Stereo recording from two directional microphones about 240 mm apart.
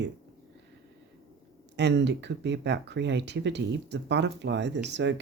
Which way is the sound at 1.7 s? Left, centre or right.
Right.